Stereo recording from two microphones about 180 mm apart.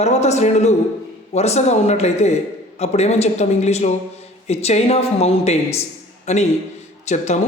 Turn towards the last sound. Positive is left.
turn(degrees=40)  # may be behind; listen again after turning